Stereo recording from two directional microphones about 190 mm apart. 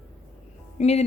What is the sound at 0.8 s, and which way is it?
Music, 35° left (ahead or behind).